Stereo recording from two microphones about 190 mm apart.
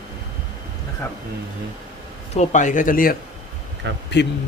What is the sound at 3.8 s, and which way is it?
Speech, 75° right (ahead or behind).